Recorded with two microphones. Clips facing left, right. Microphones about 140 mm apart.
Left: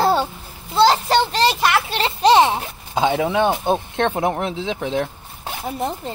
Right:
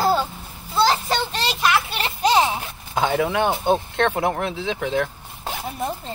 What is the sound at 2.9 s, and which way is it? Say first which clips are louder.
Speech: left 2 dB; 20° left (ahead or behind).